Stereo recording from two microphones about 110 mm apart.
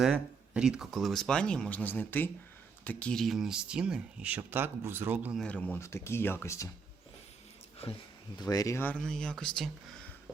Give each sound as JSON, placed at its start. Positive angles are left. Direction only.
{"t": 0.0, "sound": "speech", "side_deg": -5}
{"t": 5.4, "sound": "speech", "side_deg": 10}
{"t": 5.8, "sound": "speech", "side_deg": 25}
{"t": 8.4, "sound": "speech", "side_deg": 35}
{"t": 9.0, "sound": "speech", "side_deg": 5}